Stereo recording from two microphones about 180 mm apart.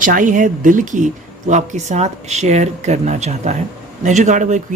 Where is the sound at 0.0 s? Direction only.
45° right (ahead or behind).